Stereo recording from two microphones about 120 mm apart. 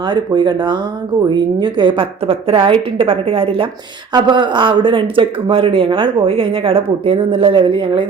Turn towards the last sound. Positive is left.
turn(degrees=-45)  # may be behind; listen again after turning